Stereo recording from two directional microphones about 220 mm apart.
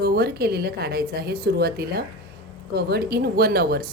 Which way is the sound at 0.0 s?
45° right (ahead or behind).